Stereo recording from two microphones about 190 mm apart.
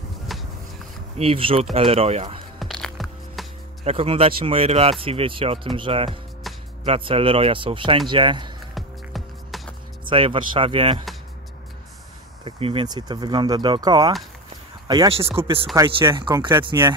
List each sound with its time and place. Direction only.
0.3 s a sound: centre (ahead or behind)
1.1 s speech: 30° right (ahead or behind)
2.6 s music: centre (ahead or behind)
3.8 s speech: 30° right (ahead or behind)
6.5 s music: centre (ahead or behind)
6.8 s speech: 30° right (ahead or behind)
8.7 s music: centre (ahead or behind)
10.0 s speech: 30° right (ahead or behind)
12.4 s speech: 30° right (ahead or behind)